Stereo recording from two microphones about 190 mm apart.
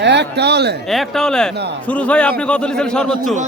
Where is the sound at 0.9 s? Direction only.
Centre (ahead or behind).